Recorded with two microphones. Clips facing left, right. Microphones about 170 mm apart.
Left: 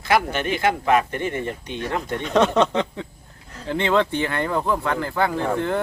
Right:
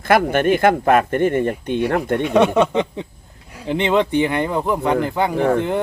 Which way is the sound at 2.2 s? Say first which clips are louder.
Right 2 dB; 10° right (ahead or behind).